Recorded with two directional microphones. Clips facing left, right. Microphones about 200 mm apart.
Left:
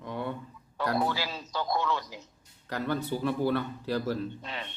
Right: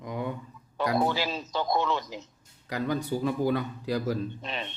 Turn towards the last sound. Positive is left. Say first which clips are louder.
# right 2 dB
turn(degrees=-20)  # may be behind; listen again after turning